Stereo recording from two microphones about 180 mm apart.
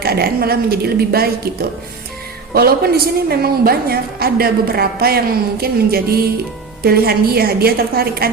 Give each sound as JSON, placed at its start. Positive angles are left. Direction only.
{"t": 0.0, "sound": "a woman's voice", "side_deg": -60}
{"t": 2.5, "sound": "a woman's voice", "side_deg": -55}